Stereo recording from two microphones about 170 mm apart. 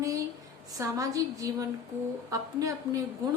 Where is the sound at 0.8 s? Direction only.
20° right (ahead or behind).